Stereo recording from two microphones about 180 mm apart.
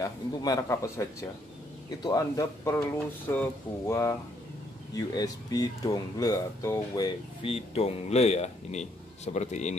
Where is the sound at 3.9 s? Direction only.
15° left (ahead or behind).